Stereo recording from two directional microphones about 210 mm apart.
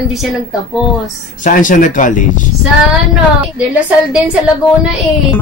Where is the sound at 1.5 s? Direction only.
40° left (ahead or behind).